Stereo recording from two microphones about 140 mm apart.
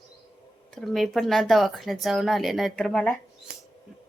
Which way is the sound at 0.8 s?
Centre (ahead or behind).